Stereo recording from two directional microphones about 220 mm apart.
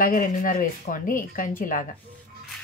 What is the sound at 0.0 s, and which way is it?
Speech, 40° left (ahead or behind).